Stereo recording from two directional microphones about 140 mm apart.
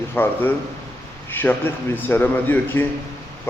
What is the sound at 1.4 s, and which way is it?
A man's voice, 15° left (ahead or behind).